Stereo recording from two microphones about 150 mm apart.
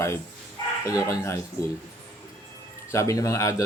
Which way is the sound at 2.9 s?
20° left (ahead or behind).